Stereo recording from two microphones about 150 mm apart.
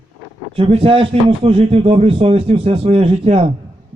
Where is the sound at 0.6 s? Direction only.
40° right (ahead or behind).